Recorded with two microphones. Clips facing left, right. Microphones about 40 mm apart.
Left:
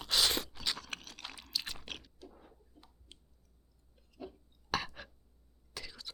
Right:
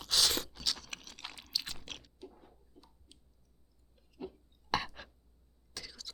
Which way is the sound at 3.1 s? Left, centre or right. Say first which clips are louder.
Left 3 dB; left.